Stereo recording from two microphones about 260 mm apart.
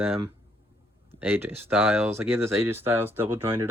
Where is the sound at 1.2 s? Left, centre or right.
Centre.